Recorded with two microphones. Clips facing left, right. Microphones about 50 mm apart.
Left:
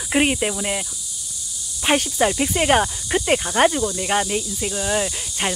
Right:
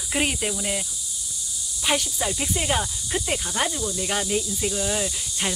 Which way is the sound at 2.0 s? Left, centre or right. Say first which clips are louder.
Left 8 dB; left.